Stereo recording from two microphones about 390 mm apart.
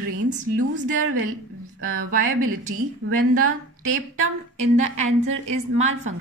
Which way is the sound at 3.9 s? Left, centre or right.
Right.